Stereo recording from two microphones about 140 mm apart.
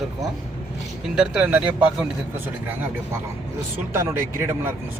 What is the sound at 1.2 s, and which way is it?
Speech, 5° right (ahead or behind).